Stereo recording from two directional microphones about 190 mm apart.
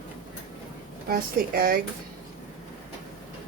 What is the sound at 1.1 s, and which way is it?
Speech, 50° right (ahead or behind).